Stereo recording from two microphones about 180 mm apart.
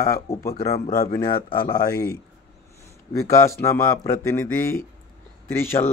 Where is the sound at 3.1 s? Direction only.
15° left (ahead or behind).